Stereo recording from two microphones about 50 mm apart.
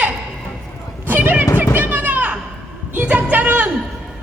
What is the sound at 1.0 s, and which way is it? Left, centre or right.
Children playing, right.